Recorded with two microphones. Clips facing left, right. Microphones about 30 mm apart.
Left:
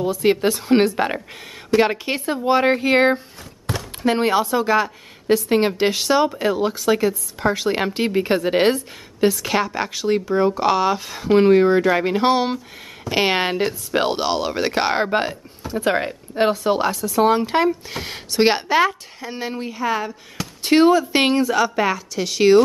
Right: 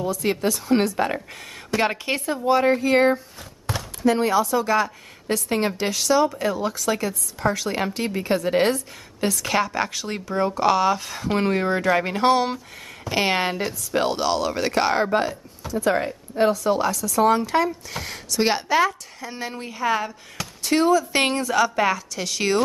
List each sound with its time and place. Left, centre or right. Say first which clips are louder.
0.0 s a woman's voice: left 5 dB; left
1.7 s a woman's voice: left 5 dB; centre
2.2 s a woman's voice: left 2 dB; left
9.2 s a woman's voice: left 4 dB; centre
20.6 s speech: left 5 dB; left
21.1 s a woman's voice: left 4 dB; centre